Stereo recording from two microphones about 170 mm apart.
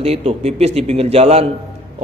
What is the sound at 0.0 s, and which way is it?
A man's voice, 35° right (ahead or behind).